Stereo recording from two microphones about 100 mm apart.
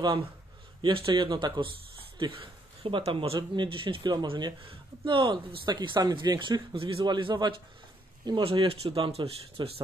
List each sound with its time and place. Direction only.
0.0 s speech: 55° right (ahead or behind)
4.6 s speech: 60° right (ahead or behind)
5.7 s speech: 45° right (ahead or behind)
6.7 s speech: 65° right (ahead or behind)
7.1 s speech: 50° right (ahead or behind)